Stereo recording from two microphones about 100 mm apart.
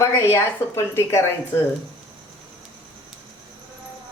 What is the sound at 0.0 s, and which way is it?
Speech, 30° left (ahead or behind).